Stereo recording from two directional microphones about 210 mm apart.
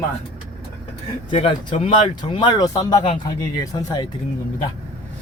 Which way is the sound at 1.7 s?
35° left (ahead or behind).